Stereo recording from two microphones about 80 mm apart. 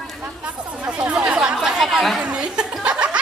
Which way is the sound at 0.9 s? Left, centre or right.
Centre.